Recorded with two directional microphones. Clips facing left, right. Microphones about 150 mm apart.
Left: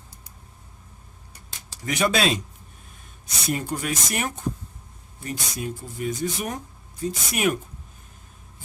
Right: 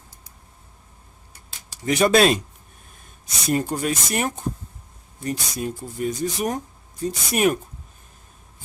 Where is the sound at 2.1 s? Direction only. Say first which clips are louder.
Right 9 dB; 50° right (ahead or behind).